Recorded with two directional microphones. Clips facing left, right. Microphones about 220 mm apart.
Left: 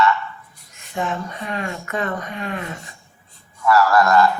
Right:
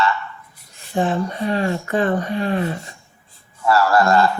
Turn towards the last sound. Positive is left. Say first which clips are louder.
# even
turn(degrees=-30)  # may be behind; listen again after turning